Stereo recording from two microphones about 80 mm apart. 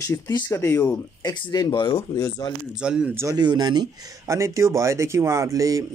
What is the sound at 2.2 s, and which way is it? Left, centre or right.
Speech, left.